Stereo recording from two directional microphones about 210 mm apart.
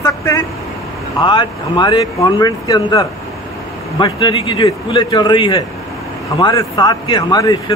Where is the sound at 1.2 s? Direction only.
20° left (ahead or behind).